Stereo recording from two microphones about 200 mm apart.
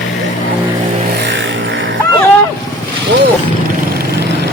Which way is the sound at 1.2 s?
65° right (ahead or behind).